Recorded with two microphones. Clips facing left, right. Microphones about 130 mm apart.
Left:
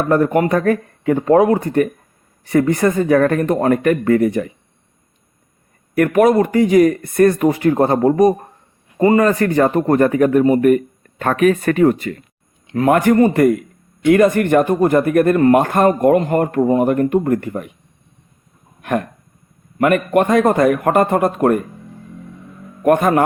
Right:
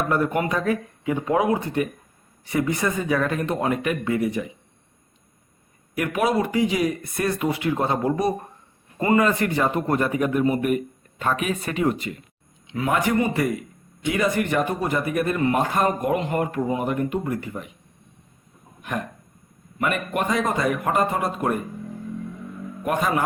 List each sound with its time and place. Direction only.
0.1 s speech: 45° left (ahead or behind)
6.1 s speech: 45° left (ahead or behind)
18.8 s speech: 60° left (ahead or behind)
22.8 s speech: 50° left (ahead or behind)